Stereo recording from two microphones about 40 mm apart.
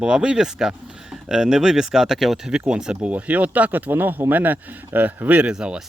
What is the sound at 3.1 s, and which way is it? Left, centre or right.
Speech, right.